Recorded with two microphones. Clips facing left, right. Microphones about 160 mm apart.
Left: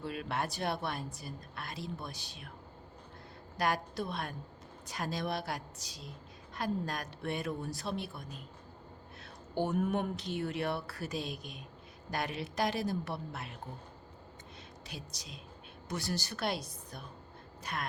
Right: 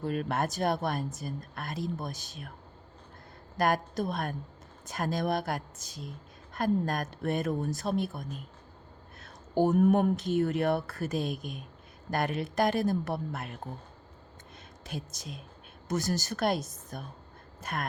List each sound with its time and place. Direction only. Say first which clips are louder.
0.0 s speech: right 6 dB; 45° right (ahead or behind)
3.6 s speech: right 5 dB; 45° right (ahead or behind)
14.8 s a woman's voice: right 9 dB; 50° right (ahead or behind)